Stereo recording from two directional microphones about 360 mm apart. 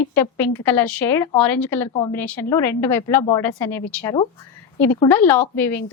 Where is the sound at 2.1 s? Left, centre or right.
Left.